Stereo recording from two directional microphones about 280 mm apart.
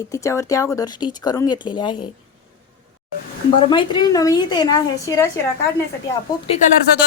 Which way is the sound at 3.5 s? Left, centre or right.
Centre.